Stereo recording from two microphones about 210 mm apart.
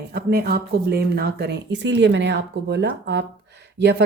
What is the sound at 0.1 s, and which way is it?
Speech, 45° right (ahead or behind).